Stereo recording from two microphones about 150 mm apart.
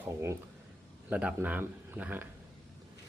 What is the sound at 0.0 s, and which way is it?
A man's voice, 20° right (ahead or behind).